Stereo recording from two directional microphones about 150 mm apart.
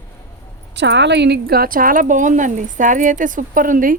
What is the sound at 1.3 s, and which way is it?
Speech, 85° right.